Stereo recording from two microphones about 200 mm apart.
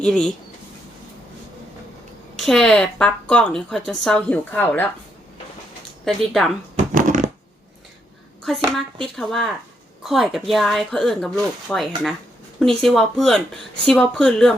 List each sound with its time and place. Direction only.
0.0 s a woman's voice: 5° left (ahead or behind)
2.4 s a woman's voice: centre (ahead or behind)
6.1 s a woman's voice: centre (ahead or behind)
6.7 s a sound: 40° right (ahead or behind)
8.4 s a woman's voice: centre (ahead or behind)